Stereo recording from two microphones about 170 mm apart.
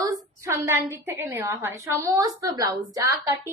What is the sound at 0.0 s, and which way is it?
A woman's voice, 20° right (ahead or behind).